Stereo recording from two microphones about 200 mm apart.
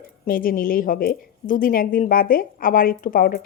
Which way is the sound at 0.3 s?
45° left (ahead or behind).